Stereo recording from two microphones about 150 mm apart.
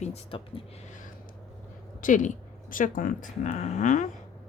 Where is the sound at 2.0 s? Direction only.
60° left (ahead or behind).